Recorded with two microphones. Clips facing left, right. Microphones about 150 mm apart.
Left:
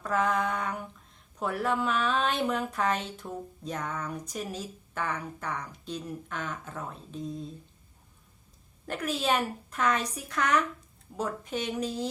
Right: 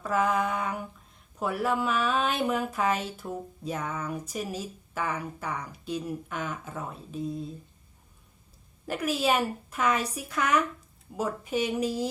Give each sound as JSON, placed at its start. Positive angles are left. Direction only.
{"t": 0.0, "sound": "a sound", "side_deg": -5}
{"t": 1.4, "sound": "speech", "side_deg": -5}
{"t": 8.9, "sound": "speech", "side_deg": -5}